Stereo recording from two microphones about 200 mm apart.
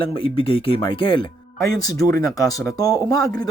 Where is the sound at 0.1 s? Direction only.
25° left (ahead or behind).